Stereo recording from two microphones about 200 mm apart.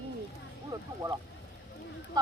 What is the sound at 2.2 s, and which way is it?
Speech, 20° right (ahead or behind).